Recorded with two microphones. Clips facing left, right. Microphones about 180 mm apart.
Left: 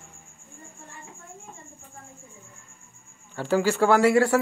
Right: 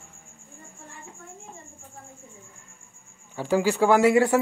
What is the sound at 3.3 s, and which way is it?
Speech, 15° right (ahead or behind).